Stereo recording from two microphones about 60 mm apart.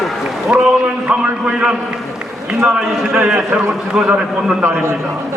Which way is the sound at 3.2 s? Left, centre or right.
Centre.